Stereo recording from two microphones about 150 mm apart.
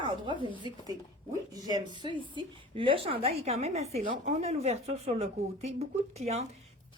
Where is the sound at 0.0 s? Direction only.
30° right (ahead or behind).